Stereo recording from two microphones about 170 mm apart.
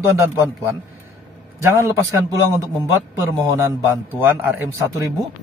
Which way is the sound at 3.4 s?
15° right (ahead or behind).